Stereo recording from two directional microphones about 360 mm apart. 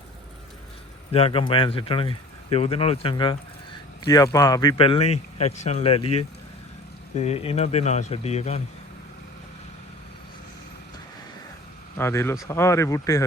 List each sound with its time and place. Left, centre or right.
1.1 s speech: centre
7.2 s speech: centre
11.9 s speech: centre